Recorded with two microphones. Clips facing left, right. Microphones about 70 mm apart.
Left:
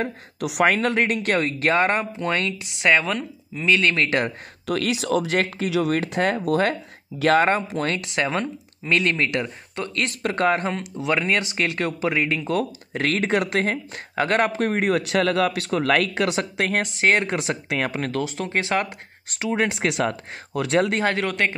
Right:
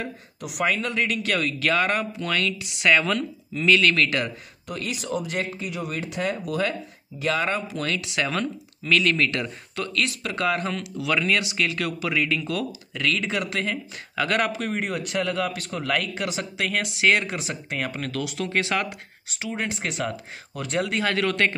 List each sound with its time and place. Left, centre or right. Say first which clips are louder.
0.4 s speech: left 6 dB; left
4.6 s speech: left 7 dB; left
9.9 s speech: left 4 dB; left
14.6 s speech: left 7 dB; left
15.0 s speech: left 6 dB; left
19.3 s speech: left 6 dB; left
21.0 s speech: left 1 dB; left